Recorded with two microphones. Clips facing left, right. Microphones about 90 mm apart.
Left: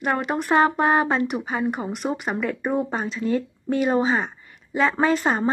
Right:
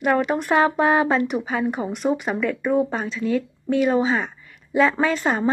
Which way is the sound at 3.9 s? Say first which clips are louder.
Right 1 dB; 5° left (ahead or behind).